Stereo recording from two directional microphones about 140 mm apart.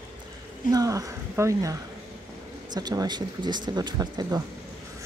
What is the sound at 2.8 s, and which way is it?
Speech, 30° right (ahead or behind).